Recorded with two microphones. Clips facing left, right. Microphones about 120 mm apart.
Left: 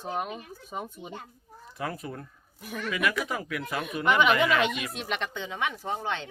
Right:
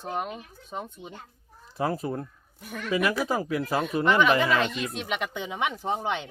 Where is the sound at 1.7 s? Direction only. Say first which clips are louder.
Right 7 dB; 30° right (ahead or behind).